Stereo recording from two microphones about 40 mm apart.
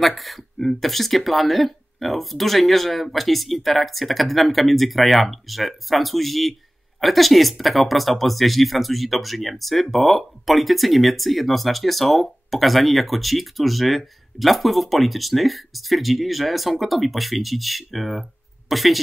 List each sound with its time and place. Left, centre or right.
0.0 s speech: centre